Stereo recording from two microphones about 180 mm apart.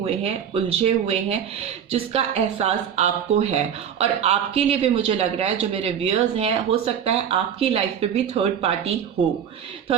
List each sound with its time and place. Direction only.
0.0 s a woman's voice: 35° right (ahead or behind)